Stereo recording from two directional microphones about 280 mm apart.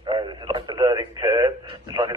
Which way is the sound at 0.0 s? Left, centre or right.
Centre.